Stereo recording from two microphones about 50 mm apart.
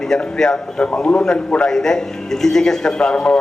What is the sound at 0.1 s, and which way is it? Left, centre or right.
A man's voice, centre.